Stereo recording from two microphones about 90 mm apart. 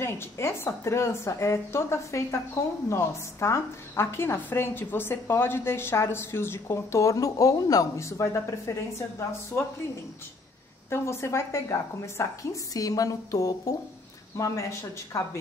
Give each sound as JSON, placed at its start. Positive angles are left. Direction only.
{"t": 0.0, "sound": "a woman's voice", "side_deg": 30}
{"t": 10.9, "sound": "a woman's voice", "side_deg": 30}
{"t": 12.7, "sound": "a woman's voice", "side_deg": 40}